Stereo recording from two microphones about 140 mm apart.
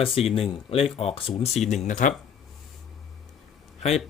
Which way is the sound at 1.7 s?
60° left (ahead or behind).